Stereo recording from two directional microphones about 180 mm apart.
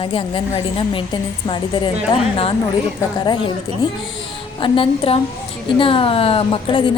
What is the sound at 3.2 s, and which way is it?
A woman's voice, 25° left (ahead or behind).